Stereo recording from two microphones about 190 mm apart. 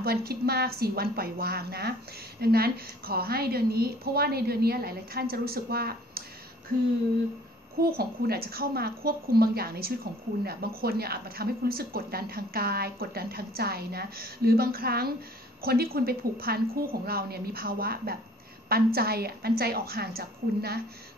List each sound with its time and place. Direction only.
0.0 s a woman's voice: 55° right (ahead or behind)
7.8 s a woman's voice: 50° right (ahead or behind)